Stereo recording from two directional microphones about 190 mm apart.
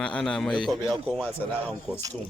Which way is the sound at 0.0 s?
5° left (ahead or behind).